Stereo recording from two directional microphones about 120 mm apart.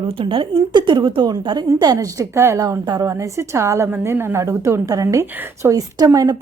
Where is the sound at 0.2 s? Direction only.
45° right (ahead or behind).